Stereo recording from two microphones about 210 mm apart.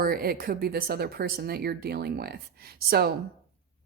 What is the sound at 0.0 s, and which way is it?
A woman's voice, 45° right (ahead or behind).